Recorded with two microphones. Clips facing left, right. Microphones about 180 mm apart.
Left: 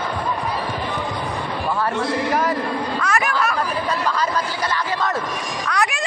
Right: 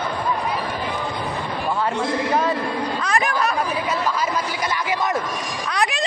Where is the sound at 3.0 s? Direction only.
30° right (ahead or behind).